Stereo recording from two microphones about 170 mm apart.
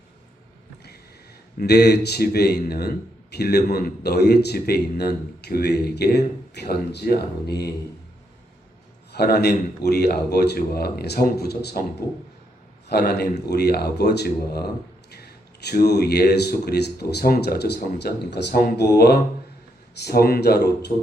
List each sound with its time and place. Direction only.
1.5 s speech: 75° left (ahead or behind)
9.1 s speech: 70° left (ahead or behind)